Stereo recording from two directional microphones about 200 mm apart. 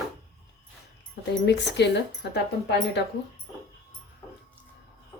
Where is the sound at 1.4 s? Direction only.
60° left (ahead or behind).